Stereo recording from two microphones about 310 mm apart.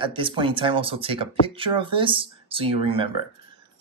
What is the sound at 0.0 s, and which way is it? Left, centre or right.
Speech, centre.